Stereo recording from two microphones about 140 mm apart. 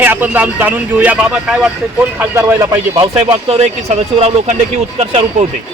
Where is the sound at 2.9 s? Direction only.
40° right (ahead or behind).